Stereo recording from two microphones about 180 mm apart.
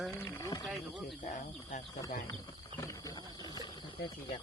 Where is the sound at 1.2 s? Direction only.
45° left (ahead or behind).